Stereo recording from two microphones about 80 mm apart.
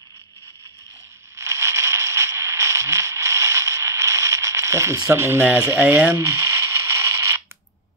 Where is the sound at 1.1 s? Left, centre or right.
Right.